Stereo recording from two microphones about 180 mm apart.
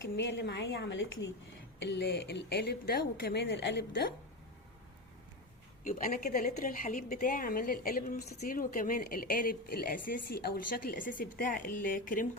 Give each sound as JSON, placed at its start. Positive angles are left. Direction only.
{"t": 0.0, "sound": "a woman's voice", "side_deg": 75}
{"t": 5.8, "sound": "a woman's voice", "side_deg": 55}